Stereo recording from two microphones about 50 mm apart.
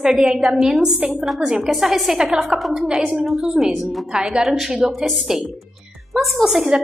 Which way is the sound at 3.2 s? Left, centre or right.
Centre.